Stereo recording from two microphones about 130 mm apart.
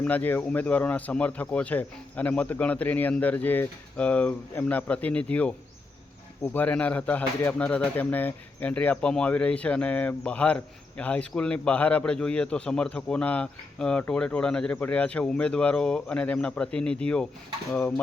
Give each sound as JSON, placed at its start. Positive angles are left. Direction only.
{"t": 0.0, "sound": "speech", "side_deg": 15}